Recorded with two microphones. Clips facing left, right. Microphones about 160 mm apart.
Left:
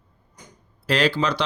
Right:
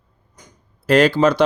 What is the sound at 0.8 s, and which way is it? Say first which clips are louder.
Speech: right 8 dB; 50° right (ahead or behind).